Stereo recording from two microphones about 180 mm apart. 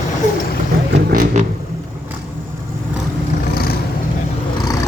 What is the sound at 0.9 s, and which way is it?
Vehicle, 65° right (ahead or behind).